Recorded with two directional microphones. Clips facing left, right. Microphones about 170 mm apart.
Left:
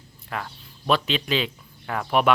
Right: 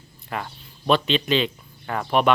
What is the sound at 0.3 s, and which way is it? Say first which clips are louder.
Speech: right 2 dB; 5° right (ahead or behind).